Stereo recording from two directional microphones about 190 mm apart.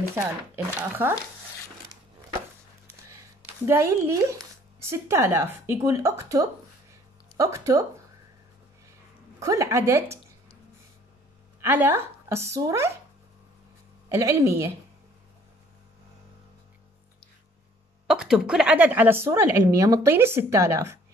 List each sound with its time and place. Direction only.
0.1 s a woman's voice: 15° right (ahead or behind)
3.6 s a woman's voice: 15° right (ahead or behind)
9.4 s a woman's voice: 15° right (ahead or behind)
11.6 s a woman's voice: 10° right (ahead or behind)
14.0 s speech: 15° right (ahead or behind)
18.0 s a woman's voice: 5° right (ahead or behind)